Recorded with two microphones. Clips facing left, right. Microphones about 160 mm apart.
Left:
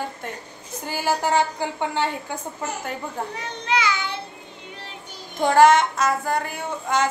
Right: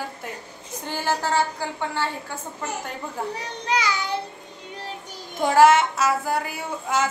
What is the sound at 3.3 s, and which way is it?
Speech, 40° right (ahead or behind).